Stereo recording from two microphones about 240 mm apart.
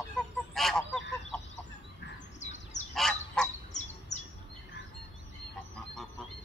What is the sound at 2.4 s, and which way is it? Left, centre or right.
Bird, left.